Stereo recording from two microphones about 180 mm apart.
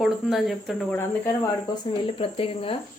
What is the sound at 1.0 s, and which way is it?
Speech, 15° left (ahead or behind).